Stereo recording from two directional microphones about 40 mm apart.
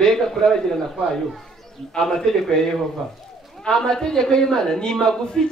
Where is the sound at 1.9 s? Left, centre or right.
Centre.